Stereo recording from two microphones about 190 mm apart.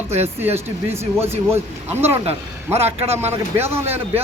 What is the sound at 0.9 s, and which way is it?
A man's voice, 15° right (ahead or behind).